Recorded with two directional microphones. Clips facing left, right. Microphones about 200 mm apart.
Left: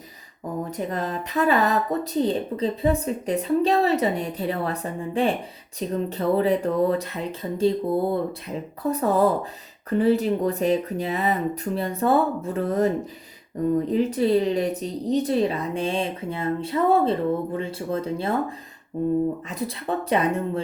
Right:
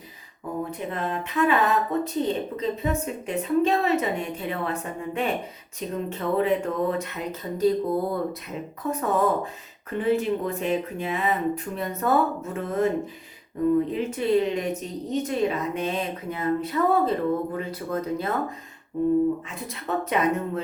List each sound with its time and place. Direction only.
0.7 s speech: 40° left (ahead or behind)
13.9 s speech: 35° left (ahead or behind)
19.5 s speech: 35° left (ahead or behind)